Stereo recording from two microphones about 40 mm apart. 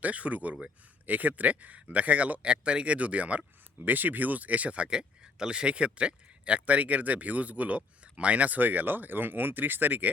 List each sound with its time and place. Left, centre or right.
0.0 s speech: right
3.8 s speech: right